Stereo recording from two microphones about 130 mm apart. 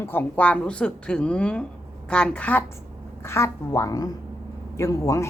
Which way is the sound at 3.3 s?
20° left (ahead or behind).